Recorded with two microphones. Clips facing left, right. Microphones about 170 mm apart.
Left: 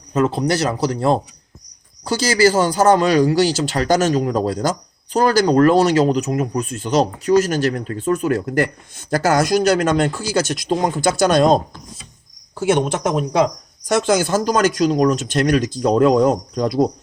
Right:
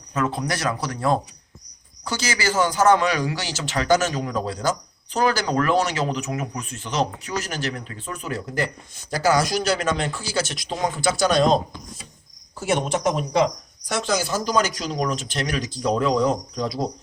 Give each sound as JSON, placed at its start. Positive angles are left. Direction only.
{"t": 0.1, "sound": "speech", "side_deg": 30}
{"t": 12.7, "sound": "speech", "side_deg": 55}